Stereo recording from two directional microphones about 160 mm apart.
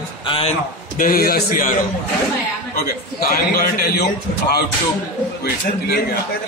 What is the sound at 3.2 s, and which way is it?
Speech, 65° left (ahead or behind).